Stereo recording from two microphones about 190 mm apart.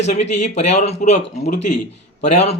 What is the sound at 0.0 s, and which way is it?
Speech, 35° left (ahead or behind).